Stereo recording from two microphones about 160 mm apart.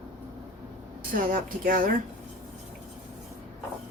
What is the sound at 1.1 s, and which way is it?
Speech, 60° right (ahead or behind).